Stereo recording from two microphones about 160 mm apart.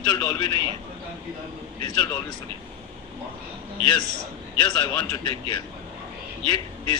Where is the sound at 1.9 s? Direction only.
25° left (ahead or behind).